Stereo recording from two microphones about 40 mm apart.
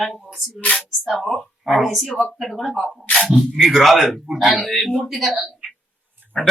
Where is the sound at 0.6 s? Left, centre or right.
Left.